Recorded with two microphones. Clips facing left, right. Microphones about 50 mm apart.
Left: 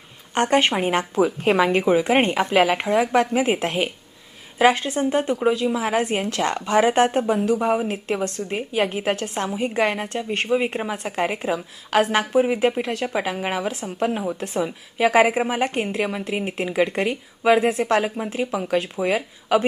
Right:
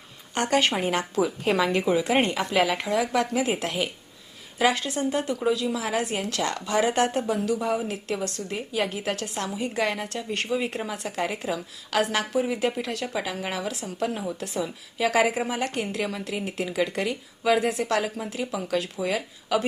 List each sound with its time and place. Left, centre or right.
0.3 s a woman's voice: left